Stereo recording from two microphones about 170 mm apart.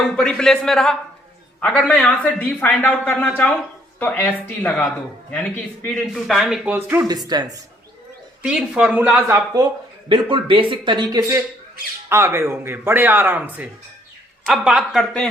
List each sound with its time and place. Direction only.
0.2 s speech: 5° left (ahead or behind)
6.7 s speech: 10° right (ahead or behind)
7.3 s speech: 25° right (ahead or behind)
8.4 s speech: 5° right (ahead or behind)
10.1 s speech: 30° right (ahead or behind); by 15.3 s centre (ahead or behind)